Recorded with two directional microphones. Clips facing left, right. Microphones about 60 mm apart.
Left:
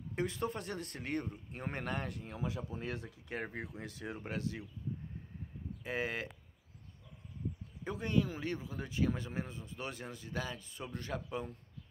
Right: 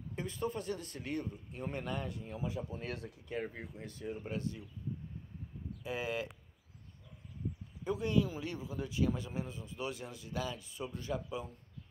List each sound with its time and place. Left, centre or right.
0.1 s speech: left
3.5 s speech: left
5.9 s speech: left
7.8 s speech: left